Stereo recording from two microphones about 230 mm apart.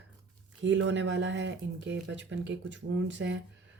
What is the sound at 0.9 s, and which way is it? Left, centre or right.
Speech, right.